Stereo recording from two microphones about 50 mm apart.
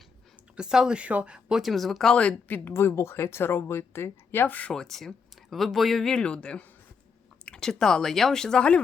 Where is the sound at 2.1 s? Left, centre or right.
Left.